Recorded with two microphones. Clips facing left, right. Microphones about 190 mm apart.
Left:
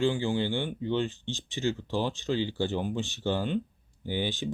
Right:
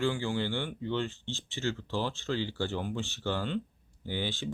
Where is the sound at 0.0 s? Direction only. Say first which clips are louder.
Left 4 dB; 20° left (ahead or behind).